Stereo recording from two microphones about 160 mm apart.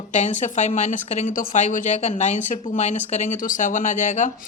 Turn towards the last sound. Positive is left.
turn(degrees=50)  # may be behind; listen again after turning